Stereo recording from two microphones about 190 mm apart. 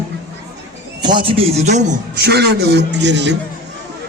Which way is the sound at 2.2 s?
60° right (ahead or behind).